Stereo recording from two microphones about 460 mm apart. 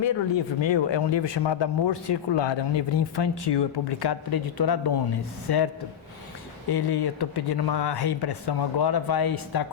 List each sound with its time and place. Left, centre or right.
0.0 s a man's voice: left
6.7 s speech: left